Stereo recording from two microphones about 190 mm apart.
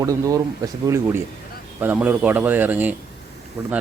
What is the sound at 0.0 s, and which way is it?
Speech, 15° right (ahead or behind).